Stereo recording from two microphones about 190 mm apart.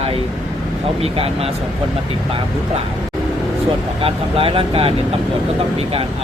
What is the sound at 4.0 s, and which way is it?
Speech, 30° right (ahead or behind).